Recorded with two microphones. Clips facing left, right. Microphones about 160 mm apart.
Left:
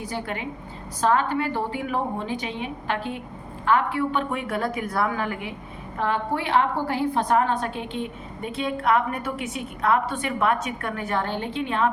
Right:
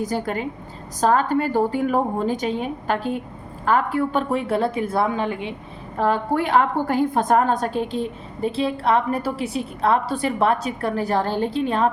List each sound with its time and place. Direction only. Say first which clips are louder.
0.0 s a woman's voice: right 6 dB; 40° right (ahead or behind); by 5.5 s 25° right (ahead or behind)
6.0 s a woman's voice: right 5 dB; 40° right (ahead or behind)